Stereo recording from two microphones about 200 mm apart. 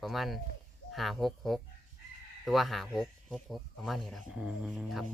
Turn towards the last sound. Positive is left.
turn(degrees=0)  # may be behind; listen again after turning